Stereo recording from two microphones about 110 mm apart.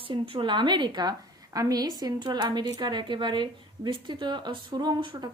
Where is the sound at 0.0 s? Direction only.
55° right (ahead or behind).